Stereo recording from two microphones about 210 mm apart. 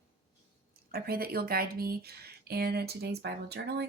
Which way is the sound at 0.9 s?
45° right (ahead or behind).